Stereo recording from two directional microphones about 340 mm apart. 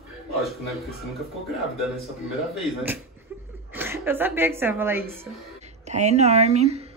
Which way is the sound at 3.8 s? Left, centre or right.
Centre.